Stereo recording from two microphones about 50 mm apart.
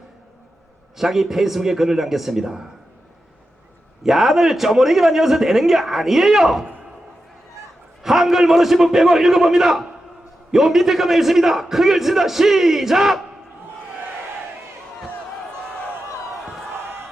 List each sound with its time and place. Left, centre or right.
0.9 s a man's voice: centre
4.0 s a man's voice: centre
8.0 s a man's voice: centre
16.7 s crowd: right